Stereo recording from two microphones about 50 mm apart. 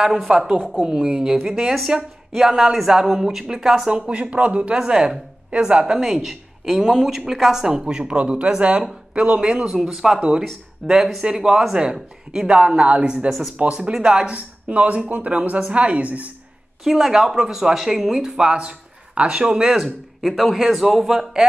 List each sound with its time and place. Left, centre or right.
0.3 s speech: centre
3.9 s speech: right
5.9 s speech: centre
9.8 s speech: centre; by 16.3 s right
16.8 s speech: centre